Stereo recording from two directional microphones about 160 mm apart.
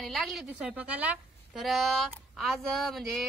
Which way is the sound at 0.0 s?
Centre (ahead or behind).